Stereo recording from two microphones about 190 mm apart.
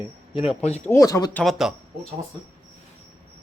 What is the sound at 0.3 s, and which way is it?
Speech, 35° left (ahead or behind).